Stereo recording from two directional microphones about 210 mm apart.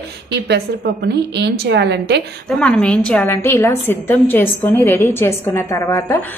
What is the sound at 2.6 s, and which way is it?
A woman's voice, 5° left (ahead or behind).